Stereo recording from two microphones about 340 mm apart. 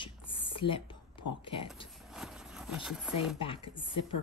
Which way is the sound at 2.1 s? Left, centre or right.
Centre.